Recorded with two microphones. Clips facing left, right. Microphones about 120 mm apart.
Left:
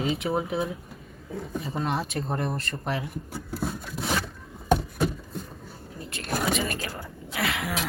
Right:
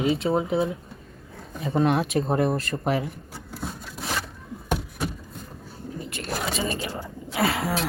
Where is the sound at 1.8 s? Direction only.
70° right (ahead or behind).